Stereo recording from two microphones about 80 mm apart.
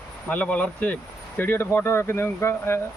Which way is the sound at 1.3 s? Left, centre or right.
Left.